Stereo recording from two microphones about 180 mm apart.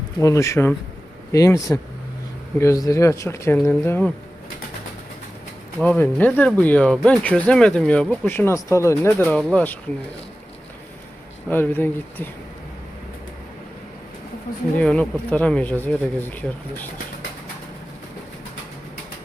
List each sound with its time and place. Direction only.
0.2 s speech: 15° left (ahead or behind)
5.8 s speech: 10° left (ahead or behind)
11.4 s speech: 10° left (ahead or behind)
14.8 s speech: 5° left (ahead or behind)